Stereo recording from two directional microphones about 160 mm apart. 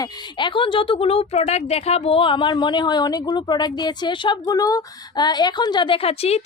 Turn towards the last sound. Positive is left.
turn(degrees=40)  # may be behind; listen again after turning